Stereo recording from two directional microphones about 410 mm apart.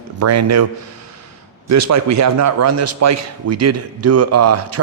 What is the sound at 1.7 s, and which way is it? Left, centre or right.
Speech, right.